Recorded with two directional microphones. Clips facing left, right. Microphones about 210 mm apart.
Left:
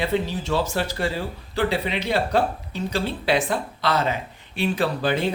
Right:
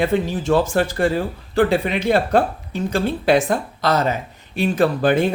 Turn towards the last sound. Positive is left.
turn(degrees=-50)  # may be behind; listen again after turning